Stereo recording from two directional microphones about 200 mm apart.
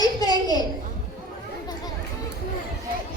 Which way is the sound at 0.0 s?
20° left (ahead or behind).